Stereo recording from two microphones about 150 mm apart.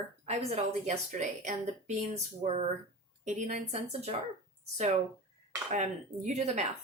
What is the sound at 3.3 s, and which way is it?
Speech, 55° right (ahead or behind).